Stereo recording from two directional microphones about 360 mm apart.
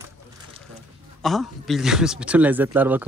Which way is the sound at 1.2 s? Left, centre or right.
Centre.